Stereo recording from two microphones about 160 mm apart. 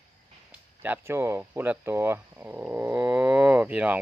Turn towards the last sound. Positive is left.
turn(degrees=-10)  # may be behind; listen again after turning